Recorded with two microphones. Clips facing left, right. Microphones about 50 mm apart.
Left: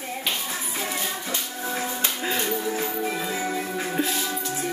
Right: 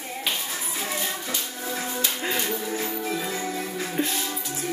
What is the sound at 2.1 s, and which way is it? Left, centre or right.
Music, centre.